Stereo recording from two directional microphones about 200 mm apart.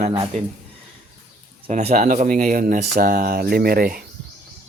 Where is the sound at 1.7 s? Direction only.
35° right (ahead or behind).